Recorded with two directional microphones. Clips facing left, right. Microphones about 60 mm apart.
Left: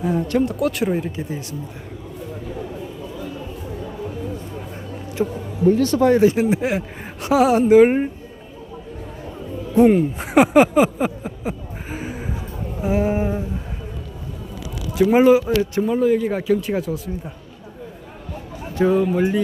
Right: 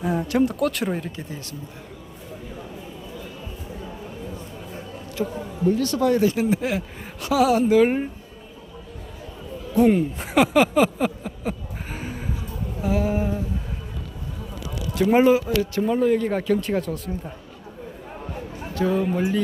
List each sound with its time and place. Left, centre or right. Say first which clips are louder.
0.0 s a man's voice: left 2 dB; centre
5.2 s speech: left 5 dB; left
9.9 s speech: left 4 dB; centre
12.8 s a sound: left 3 dB; left
14.9 s a man's voice: left 4 dB; centre
18.7 s speech: left 5 dB; left